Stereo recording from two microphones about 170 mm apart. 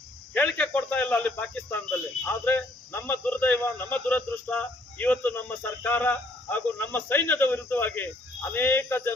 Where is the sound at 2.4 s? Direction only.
10° left (ahead or behind).